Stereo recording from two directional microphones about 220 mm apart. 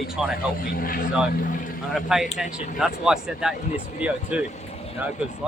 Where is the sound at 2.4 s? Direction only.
35° left (ahead or behind).